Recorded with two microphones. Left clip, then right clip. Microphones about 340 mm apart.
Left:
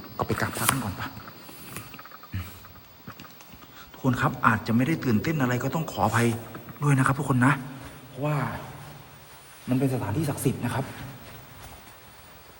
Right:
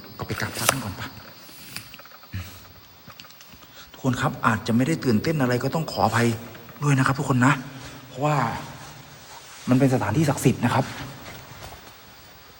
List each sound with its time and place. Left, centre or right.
0.2 s a man's voice: centre
1.9 s a sound: centre
4.0 s a man's voice: centre
9.6 s speech: right